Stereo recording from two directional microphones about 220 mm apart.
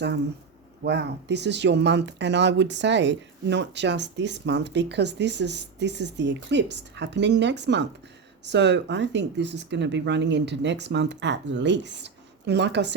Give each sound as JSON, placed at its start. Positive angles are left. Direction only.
{"t": 0.9, "sound": "speech", "side_deg": -50}